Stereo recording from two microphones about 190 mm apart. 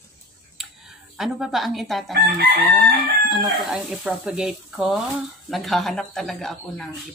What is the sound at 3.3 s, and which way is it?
Speech, centre (ahead or behind).